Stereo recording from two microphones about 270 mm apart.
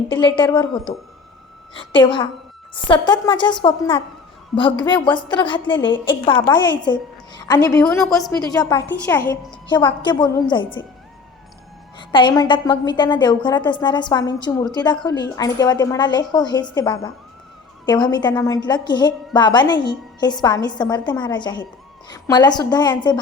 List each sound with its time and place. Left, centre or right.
0.1 s a woman's voice: centre
7.6 s a woman's voice: centre
8.4 s a woman's voice: centre
9.6 s a woman's voice: centre
11.9 s a woman's voice: centre